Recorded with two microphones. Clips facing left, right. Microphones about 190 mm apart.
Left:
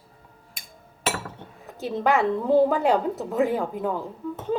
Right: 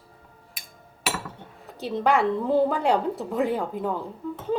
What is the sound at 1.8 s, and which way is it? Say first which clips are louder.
Speech: even; centre (ahead or behind).